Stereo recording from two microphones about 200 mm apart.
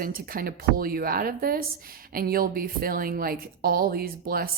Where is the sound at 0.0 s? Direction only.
45° right (ahead or behind).